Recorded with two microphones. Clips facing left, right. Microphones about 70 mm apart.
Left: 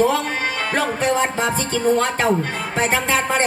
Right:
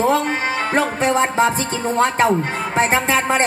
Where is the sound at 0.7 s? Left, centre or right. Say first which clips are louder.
Right 2 dB; right.